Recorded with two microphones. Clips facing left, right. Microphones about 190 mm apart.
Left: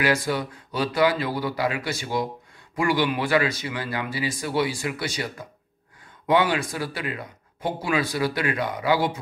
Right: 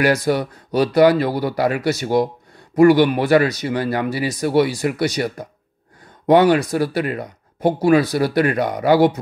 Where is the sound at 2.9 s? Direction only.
55° right (ahead or behind).